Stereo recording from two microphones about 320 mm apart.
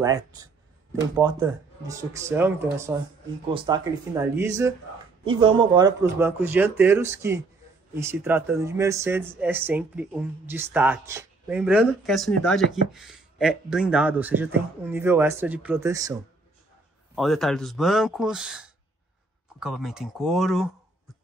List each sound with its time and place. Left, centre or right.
0.0 s speech: centre
17.1 s speech: centre